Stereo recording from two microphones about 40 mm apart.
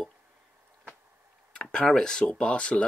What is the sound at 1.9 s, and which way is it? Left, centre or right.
Speech, centre.